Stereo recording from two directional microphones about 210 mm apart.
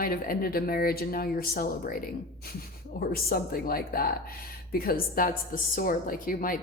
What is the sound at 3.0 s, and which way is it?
A woman's voice, 45° left (ahead or behind).